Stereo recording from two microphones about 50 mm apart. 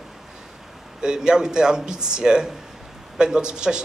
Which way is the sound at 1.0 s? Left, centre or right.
Centre.